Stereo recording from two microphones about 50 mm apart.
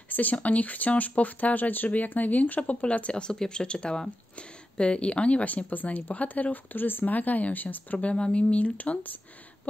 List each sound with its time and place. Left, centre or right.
0.1 s speech: left
8.1 s speech: left